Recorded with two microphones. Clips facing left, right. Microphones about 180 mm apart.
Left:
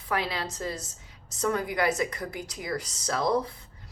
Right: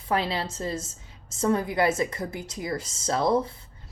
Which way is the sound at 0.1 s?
30° right (ahead or behind).